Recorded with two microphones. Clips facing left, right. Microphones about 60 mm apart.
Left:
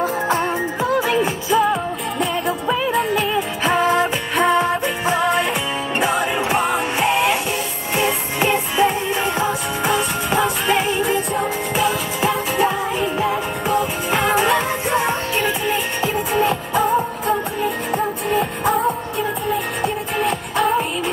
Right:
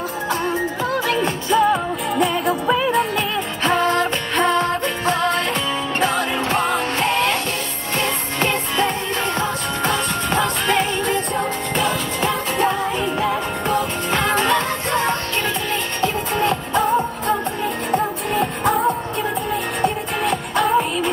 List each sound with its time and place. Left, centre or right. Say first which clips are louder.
0.3 s music: left 2 dB; left
1.5 s music: right 2 dB; centre